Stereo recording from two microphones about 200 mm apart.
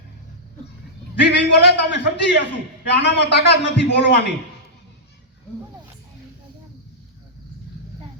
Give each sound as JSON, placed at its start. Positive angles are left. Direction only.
{"t": 1.2, "sound": "a man's voice", "side_deg": 55}